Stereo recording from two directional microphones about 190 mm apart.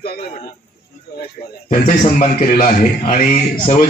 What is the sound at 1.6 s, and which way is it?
A man's voice, 40° left (ahead or behind).